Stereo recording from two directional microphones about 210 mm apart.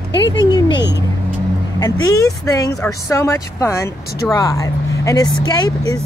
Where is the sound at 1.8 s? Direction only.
15° left (ahead or behind).